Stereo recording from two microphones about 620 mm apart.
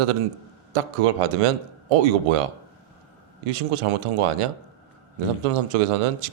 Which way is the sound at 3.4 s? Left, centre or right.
Right.